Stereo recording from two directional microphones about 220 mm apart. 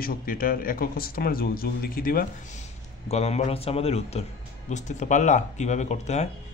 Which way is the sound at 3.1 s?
30° left (ahead or behind).